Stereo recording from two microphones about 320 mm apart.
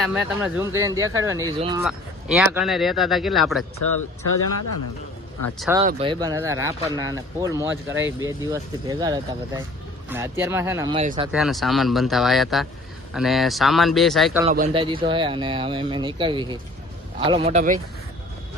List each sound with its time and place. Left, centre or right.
0.0 s speech: centre
1.8 s speech: centre
5.5 s speech: centre
5.8 s speech: centre
11.3 s speech: centre
14.4 s a man's voice: right